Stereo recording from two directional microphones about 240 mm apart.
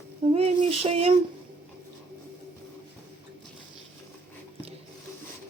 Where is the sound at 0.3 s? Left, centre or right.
Right.